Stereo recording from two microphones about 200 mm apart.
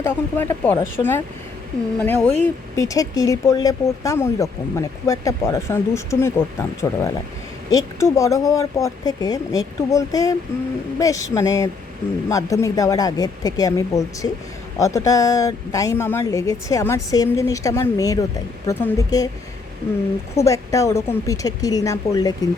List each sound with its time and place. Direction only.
0.0 s speech: 10° left (ahead or behind)
2.7 s speech: 15° left (ahead or behind)
20.3 s speech: 15° left (ahead or behind)